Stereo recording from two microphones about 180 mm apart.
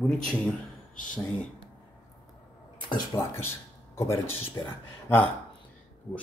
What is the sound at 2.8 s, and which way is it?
Speech, 20° left (ahead or behind).